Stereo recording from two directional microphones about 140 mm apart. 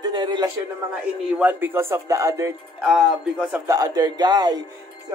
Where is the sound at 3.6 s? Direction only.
25° right (ahead or behind).